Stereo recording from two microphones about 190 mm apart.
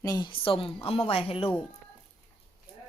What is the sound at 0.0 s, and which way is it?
A woman's voice, 20° left (ahead or behind).